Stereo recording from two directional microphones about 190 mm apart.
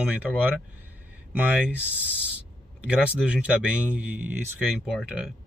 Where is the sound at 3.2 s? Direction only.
5° right (ahead or behind).